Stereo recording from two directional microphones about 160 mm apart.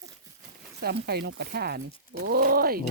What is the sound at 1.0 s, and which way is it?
Speech, 85° right.